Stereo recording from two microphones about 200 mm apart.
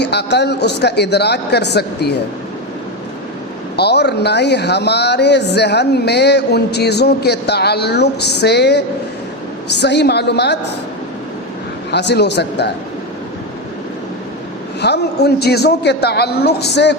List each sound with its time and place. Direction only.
0.0 s speech: 55° left (ahead or behind)
3.8 s speech: 55° left (ahead or behind)
11.9 s speech: 60° left (ahead or behind)
14.8 s speech: 55° left (ahead or behind)